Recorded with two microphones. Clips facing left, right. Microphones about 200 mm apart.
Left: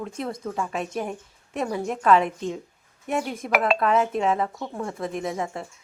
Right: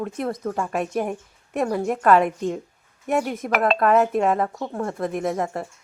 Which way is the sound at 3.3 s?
5° right (ahead or behind).